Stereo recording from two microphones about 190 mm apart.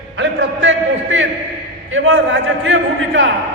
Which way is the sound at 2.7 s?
80° right.